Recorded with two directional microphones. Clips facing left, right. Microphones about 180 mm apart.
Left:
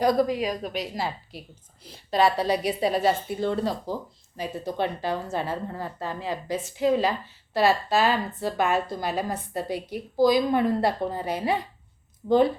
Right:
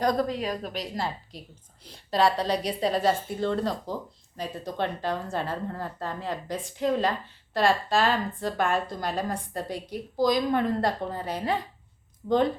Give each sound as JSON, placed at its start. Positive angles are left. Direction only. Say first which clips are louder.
{"t": 0.0, "sound": "a woman's voice", "louder": "left 3 dB", "side_deg": 10}
{"t": 12.2, "sound": "a woman's voice", "louder": "left 3 dB", "side_deg": 25}